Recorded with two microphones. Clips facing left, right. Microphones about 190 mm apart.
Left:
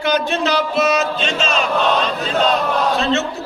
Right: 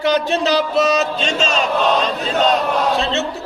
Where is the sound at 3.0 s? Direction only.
30° right (ahead or behind).